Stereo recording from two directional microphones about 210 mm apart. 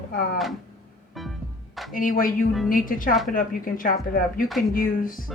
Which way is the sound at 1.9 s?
40° left (ahead or behind).